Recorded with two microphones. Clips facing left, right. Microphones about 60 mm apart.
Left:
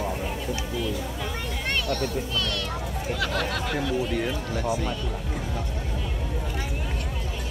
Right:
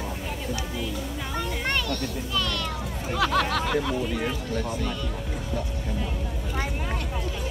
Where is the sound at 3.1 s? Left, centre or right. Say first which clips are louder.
Right 6 dB; right.